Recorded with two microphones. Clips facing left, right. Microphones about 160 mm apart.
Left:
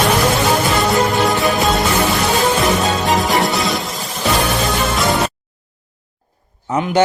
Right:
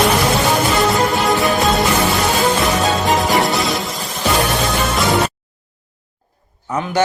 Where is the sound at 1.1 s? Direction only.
Centre (ahead or behind).